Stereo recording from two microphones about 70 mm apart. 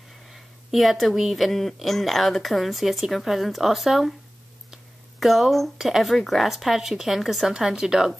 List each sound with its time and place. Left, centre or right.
0.3 s speech: centre
5.2 s speech: centre